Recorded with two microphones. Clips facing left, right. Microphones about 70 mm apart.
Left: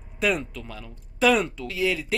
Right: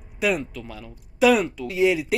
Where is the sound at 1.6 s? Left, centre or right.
Centre.